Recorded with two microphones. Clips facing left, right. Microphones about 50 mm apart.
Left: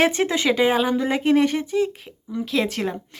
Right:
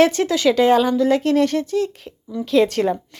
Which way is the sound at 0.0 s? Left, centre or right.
Left.